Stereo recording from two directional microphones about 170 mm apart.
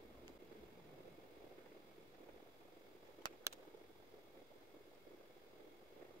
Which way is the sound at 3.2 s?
25° left (ahead or behind).